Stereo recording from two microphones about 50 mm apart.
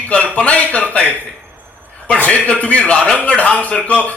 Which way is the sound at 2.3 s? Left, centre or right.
Left.